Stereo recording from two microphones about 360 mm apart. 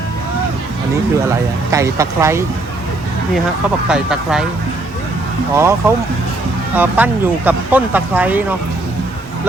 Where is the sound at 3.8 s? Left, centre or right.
Centre.